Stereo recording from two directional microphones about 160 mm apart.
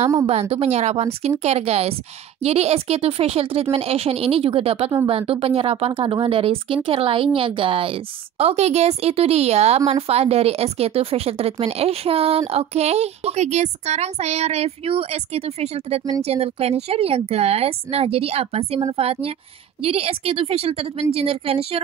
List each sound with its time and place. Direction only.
0.3 s speech: 40° right (ahead or behind)